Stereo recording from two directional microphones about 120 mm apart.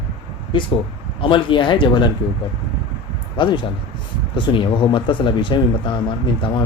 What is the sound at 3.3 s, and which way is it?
Speech, 40° left (ahead or behind).